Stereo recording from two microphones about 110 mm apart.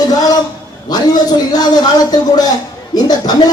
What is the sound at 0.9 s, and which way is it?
Speech, 35° left (ahead or behind).